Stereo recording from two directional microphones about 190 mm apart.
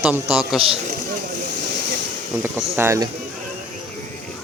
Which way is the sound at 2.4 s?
10° right (ahead or behind).